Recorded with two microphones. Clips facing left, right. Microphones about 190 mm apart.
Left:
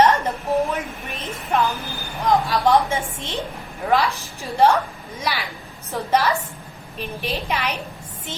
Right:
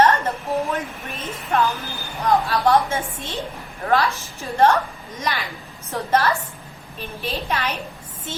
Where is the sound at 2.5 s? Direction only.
15° left (ahead or behind).